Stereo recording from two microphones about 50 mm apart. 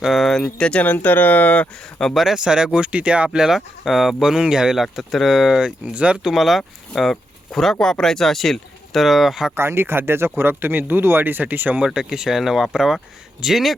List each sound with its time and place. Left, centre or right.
0.0 s speech: centre
0.4 s speech: left
0.9 s speech: left
2.1 s speech: centre
3.2 s speech: centre
4.2 s speech: centre
4.8 s speech: centre; by 6.1 s right
6.3 s speech: centre
9.6 s speech: right
10.6 s speech: right
11.9 s speech: centre